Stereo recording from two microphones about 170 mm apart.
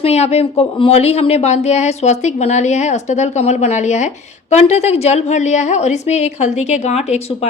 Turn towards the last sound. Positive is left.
turn(degrees=35)  # may be behind; listen again after turning